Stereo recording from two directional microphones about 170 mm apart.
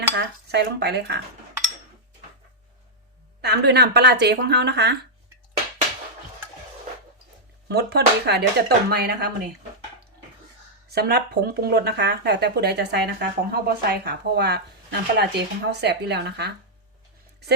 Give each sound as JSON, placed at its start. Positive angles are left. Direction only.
{"t": 0.2, "sound": "speech", "side_deg": -80}
{"t": 3.4, "sound": "speech", "side_deg": -75}
{"t": 7.7, "sound": "speech", "side_deg": -75}
{"t": 10.8, "sound": "speech", "side_deg": -70}